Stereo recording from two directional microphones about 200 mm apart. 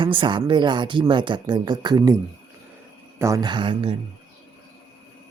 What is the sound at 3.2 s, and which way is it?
Speech, 15° right (ahead or behind).